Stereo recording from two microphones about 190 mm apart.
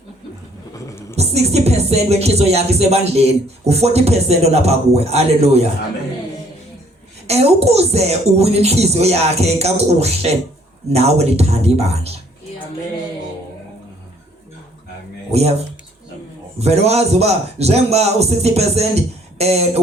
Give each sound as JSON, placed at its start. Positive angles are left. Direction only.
{"t": 0.7, "sound": "a sound", "side_deg": 15}
{"t": 1.1, "sound": "speech", "side_deg": -35}
{"t": 7.3, "sound": "speech", "side_deg": -35}
{"t": 15.3, "sound": "speech", "side_deg": -35}
{"t": 16.6, "sound": "speech", "side_deg": -35}